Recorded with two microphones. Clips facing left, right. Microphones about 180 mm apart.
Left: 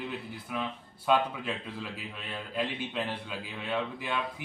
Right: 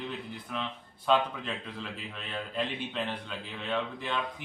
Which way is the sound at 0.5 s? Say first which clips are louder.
Left 2 dB; 10° left (ahead or behind).